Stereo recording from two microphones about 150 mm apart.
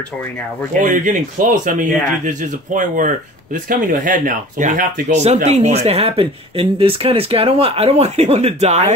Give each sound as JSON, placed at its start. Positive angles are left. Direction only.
{"t": 0.7, "sound": "speech", "side_deg": -60}